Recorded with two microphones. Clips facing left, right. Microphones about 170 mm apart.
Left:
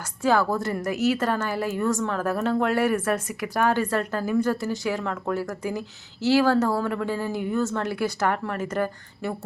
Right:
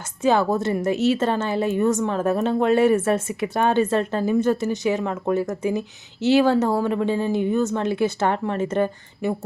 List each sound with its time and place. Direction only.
0.2 s a woman's voice: 20° right (ahead or behind)